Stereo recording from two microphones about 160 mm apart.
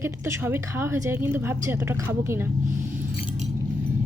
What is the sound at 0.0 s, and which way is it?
A woman's voice, 15° right (ahead or behind).